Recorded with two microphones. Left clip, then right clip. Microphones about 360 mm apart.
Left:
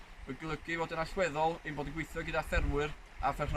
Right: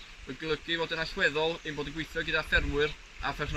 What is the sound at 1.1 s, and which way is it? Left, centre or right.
Speech, centre.